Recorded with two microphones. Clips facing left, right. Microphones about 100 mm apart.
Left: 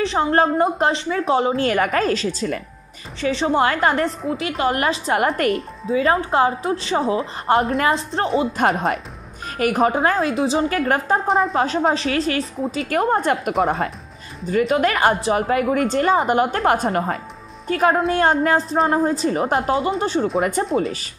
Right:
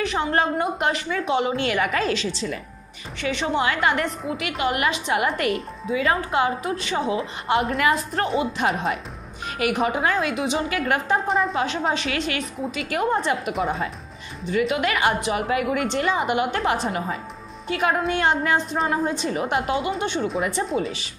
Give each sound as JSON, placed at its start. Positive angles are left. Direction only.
{"t": 0.0, "sound": "a woman's voice", "side_deg": 35}
{"t": 3.2, "sound": "a woman's voice", "side_deg": 35}
{"t": 8.5, "sound": "a woman's voice", "side_deg": 40}